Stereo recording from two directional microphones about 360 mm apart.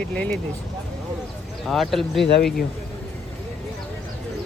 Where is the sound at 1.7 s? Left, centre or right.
Centre.